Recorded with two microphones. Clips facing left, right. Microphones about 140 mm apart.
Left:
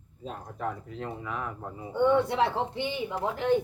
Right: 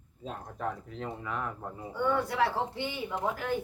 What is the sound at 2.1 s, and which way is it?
A woman's voice, 25° left (ahead or behind).